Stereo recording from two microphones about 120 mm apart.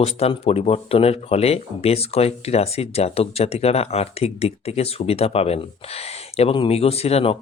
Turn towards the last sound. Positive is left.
turn(degrees=60)  # may be behind; listen again after turning